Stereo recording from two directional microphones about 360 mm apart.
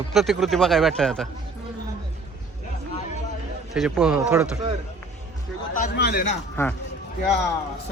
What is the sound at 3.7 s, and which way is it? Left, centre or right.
Speech, centre.